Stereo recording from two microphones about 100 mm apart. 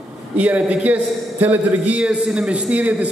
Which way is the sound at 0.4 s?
15° right (ahead or behind).